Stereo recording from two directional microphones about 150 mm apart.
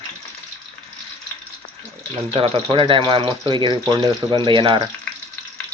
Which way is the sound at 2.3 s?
35° right (ahead or behind).